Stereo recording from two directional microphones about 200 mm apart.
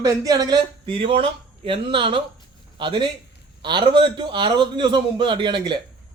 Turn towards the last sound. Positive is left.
turn(degrees=-25)  # may be behind; listen again after turning